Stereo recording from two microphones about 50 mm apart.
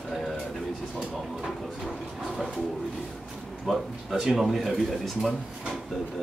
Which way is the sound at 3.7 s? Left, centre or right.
Centre.